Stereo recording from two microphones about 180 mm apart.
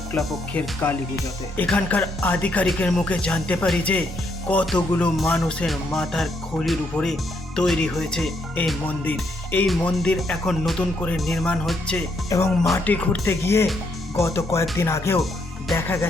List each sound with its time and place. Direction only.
0.2 s music: centre (ahead or behind)
1.5 s speech: 10° left (ahead or behind)
4.4 s music: 5° left (ahead or behind)
12.3 s speech: 15° left (ahead or behind)